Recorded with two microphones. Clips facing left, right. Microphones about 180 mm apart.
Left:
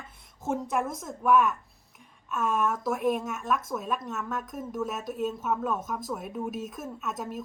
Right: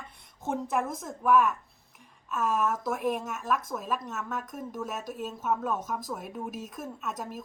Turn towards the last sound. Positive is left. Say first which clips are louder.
# left 2 dB
turn(degrees=0)  # may be behind; listen again after turning